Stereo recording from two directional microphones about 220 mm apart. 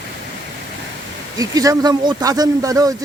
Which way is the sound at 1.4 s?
15° right (ahead or behind).